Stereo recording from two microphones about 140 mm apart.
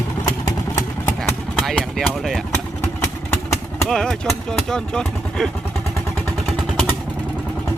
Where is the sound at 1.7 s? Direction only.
Centre (ahead or behind).